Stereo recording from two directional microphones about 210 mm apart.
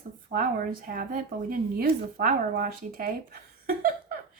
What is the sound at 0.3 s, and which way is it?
A woman's voice, 40° right (ahead or behind).